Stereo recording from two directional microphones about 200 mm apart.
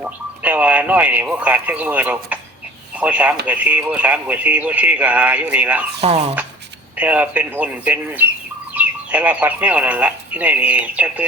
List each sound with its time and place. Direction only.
0.0 s speech: 10° right (ahead or behind)
6.0 s speech: 30° right (ahead or behind)
6.9 s speech: 5° right (ahead or behind)